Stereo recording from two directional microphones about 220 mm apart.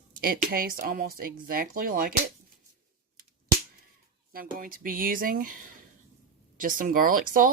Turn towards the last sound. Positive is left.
turn(degrees=-40)  # may be behind; listen again after turning